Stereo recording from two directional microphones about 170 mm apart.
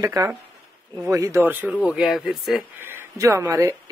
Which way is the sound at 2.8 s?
15° right (ahead or behind).